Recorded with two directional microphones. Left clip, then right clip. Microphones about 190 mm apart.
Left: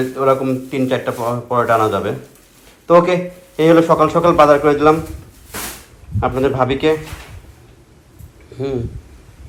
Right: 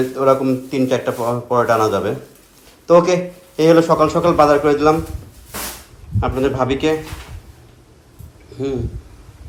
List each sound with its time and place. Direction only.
0.2 s a man's voice: 20° right (ahead or behind)
6.1 s a man's voice: 10° right (ahead or behind)
8.5 s speech: 15° right (ahead or behind)